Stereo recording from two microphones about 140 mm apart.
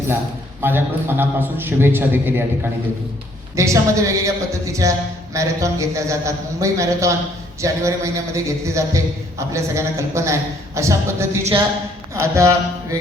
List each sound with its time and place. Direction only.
0.6 s a man's voice: 15° right (ahead or behind)
3.5 s speech: 20° right (ahead or behind)